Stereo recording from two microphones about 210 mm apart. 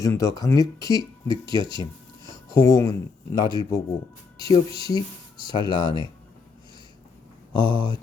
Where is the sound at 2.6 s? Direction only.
15° left (ahead or behind).